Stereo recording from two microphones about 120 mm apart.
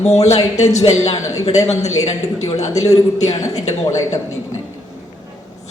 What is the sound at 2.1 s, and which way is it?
Speech, 70° left (ahead or behind).